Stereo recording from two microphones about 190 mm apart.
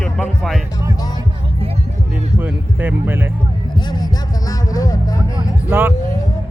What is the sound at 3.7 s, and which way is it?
Music, 20° left (ahead or behind).